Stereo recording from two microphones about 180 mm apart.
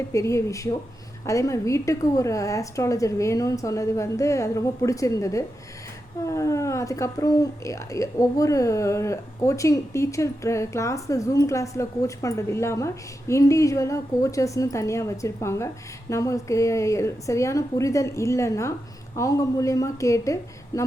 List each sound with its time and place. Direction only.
0.1 s speech: 15° left (ahead or behind)